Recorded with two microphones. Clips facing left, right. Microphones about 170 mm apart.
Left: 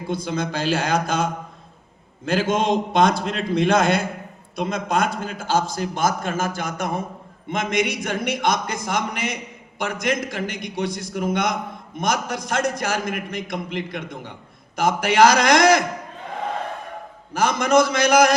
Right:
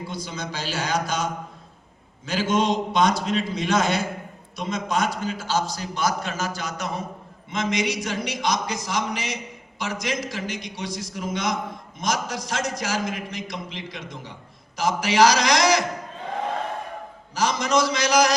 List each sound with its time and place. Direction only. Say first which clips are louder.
0.1 s a man's voice: left 7 dB; 55° left (ahead or behind)
17.3 s a man's voice: left 5 dB; 55° left (ahead or behind)